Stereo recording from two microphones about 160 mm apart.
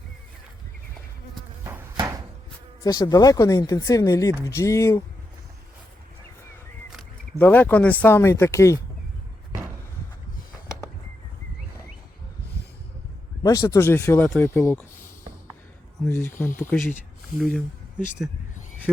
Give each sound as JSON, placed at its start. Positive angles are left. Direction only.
{"t": 2.0, "sound": "a sound", "side_deg": -20}
{"t": 2.8, "sound": "speech", "side_deg": 25}
{"t": 7.3, "sound": "speech", "side_deg": 10}
{"t": 13.4, "sound": "speech", "side_deg": 20}
{"t": 16.0, "sound": "speech", "side_deg": 15}